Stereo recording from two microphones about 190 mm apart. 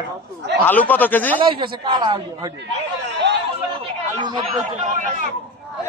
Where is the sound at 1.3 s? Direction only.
25° right (ahead or behind).